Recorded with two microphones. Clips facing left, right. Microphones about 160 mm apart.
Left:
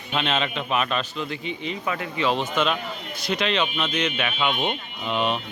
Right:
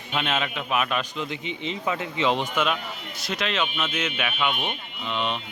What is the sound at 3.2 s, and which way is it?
A man's voice, centre (ahead or behind).